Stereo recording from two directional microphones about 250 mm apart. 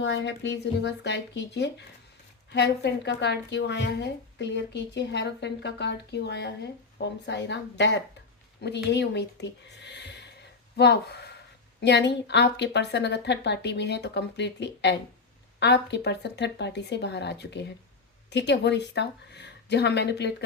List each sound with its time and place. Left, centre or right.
0.0 s a woman's voice: left